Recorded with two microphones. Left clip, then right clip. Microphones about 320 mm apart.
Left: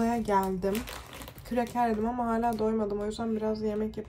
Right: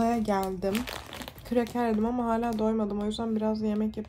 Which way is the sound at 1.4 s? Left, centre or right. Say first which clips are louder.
Even; centre.